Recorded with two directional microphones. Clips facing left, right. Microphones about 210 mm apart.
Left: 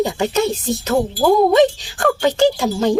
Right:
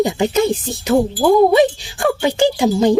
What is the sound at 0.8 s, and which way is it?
Speech, 15° right (ahead or behind).